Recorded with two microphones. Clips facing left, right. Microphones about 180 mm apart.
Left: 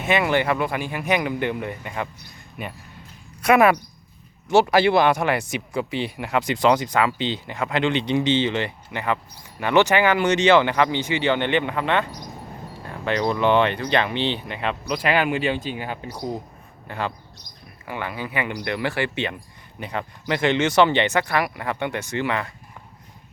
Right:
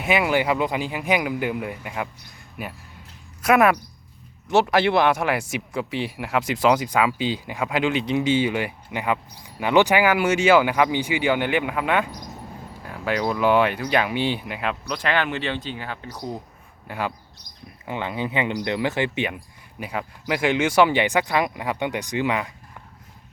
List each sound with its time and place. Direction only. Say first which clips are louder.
0.0 s speech: even; 10° right (ahead or behind)
14.9 s speech: left 4 dB; 10° left (ahead or behind)
16.8 s a man's voice: even; 10° right (ahead or behind)
17.8 s speech: right 3 dB; 20° right (ahead or behind)